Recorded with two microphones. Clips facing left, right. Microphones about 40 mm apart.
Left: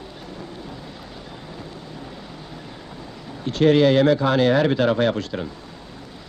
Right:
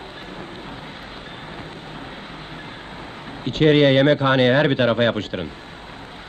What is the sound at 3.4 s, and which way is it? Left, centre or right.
Speech, right.